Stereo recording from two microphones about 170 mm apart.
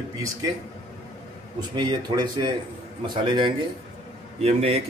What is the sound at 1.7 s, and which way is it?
A man's voice, 25° right (ahead or behind).